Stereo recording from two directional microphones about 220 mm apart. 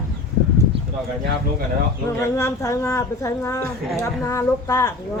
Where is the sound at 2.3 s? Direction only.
15° left (ahead or behind).